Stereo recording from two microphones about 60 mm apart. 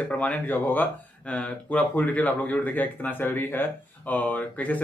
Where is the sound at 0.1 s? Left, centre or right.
Left.